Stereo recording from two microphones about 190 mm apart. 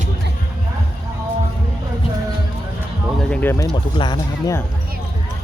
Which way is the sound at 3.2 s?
5° left (ahead or behind).